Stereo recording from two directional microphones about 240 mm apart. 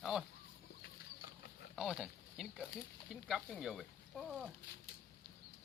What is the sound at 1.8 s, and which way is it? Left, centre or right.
Speech, centre.